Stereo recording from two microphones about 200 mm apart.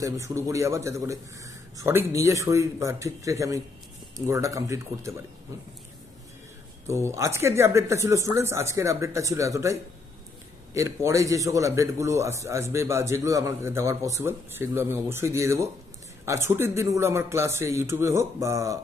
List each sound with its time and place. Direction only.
0.0 s a man's voice: 15° right (ahead or behind)
6.9 s a man's voice: 15° right (ahead or behind)